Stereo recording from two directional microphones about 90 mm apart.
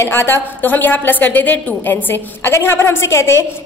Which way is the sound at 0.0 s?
25° left (ahead or behind).